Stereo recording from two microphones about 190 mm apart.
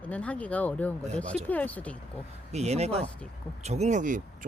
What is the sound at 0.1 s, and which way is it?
Speech, 5° left (ahead or behind).